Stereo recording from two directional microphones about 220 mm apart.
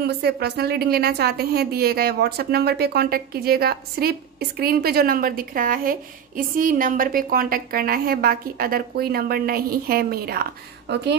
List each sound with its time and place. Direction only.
0.0 s a woman's voice: 45° right (ahead or behind)